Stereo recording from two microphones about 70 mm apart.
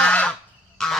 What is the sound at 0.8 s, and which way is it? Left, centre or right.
Goose, centre.